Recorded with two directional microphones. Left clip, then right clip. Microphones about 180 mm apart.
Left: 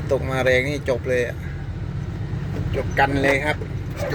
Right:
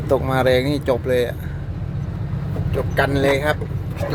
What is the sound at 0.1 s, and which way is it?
Speech, 25° right (ahead or behind).